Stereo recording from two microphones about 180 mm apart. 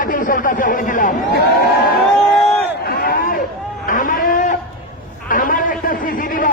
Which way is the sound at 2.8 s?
55° left (ahead or behind).